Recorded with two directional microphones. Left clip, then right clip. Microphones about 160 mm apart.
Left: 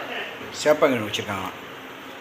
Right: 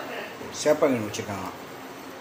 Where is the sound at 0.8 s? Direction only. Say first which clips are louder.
Left 3 dB; 10° right (ahead or behind).